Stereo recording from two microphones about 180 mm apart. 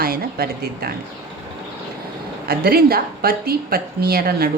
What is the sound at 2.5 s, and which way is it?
A woman's voice, 60° right (ahead or behind).